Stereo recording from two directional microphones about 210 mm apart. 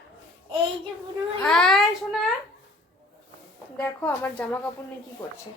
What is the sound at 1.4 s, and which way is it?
Speech, 5° left (ahead or behind).